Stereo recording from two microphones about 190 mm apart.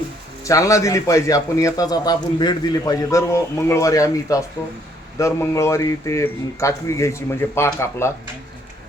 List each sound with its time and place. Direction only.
0.4 s a man's voice: 15° left (ahead or behind)